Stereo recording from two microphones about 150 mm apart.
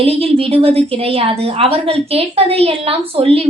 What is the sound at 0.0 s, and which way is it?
A woman's voice, 40° right (ahead or behind).